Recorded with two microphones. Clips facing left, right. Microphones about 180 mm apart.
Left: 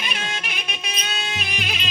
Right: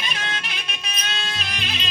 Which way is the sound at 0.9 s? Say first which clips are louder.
Even; 15° left (ahead or behind).